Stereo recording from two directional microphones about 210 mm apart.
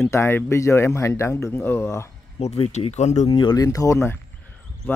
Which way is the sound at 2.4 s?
30° left (ahead or behind).